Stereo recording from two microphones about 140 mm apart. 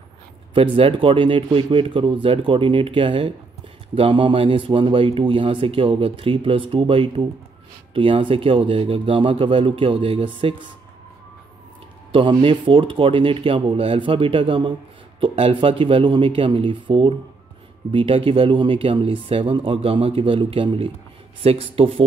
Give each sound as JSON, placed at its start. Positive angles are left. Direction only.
{"t": 0.6, "sound": "speech", "side_deg": -40}
{"t": 12.1, "sound": "speech", "side_deg": -40}